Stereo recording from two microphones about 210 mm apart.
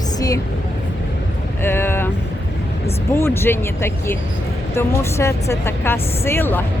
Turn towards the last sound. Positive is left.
turn(degrees=10)  # may be behind; listen again after turning